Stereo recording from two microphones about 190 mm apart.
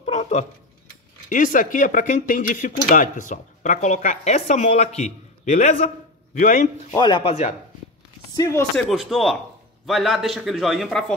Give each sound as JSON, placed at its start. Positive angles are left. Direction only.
{"t": 0.0, "sound": "a sound", "side_deg": 35}
{"t": 1.3, "sound": "speech", "side_deg": 45}
{"t": 6.9, "sound": "speech", "side_deg": 25}
{"t": 8.4, "sound": "speech", "side_deg": 15}
{"t": 8.7, "sound": "a man's voice", "side_deg": 0}